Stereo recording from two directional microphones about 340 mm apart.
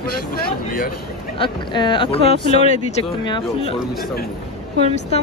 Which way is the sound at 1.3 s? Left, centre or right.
Centre.